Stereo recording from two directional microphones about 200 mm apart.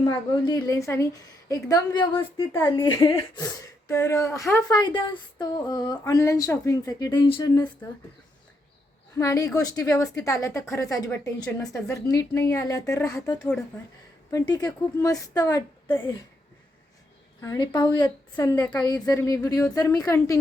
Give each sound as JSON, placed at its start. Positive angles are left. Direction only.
{"t": 0.0, "sound": "a woman's voice", "side_deg": 20}
{"t": 2.5, "sound": "a woman's voice", "side_deg": 10}
{"t": 9.1, "sound": "a woman's voice", "side_deg": 15}
{"t": 13.4, "sound": "speech", "side_deg": 5}
{"t": 14.3, "sound": "a woman's voice", "side_deg": 20}
{"t": 17.4, "sound": "a woman's voice", "side_deg": 20}